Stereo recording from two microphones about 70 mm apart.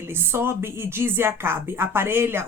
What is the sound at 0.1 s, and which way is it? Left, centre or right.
Speech, right.